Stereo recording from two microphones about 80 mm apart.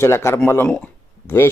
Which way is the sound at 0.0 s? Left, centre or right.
Left.